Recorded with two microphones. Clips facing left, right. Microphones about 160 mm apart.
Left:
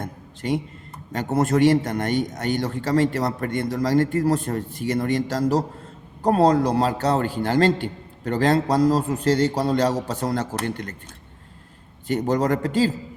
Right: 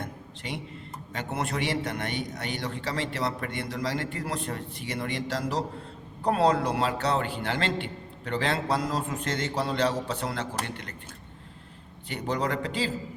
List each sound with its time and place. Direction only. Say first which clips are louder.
0.0 s a sound: left 7 dB; 45° left (ahead or behind)
1.1 s a man's voice: left 10 dB; 45° left (ahead or behind)
12.0 s a man's voice: left 8 dB; 45° left (ahead or behind)